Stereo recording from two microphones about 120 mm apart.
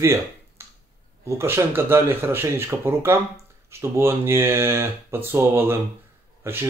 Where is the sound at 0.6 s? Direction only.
20° right (ahead or behind).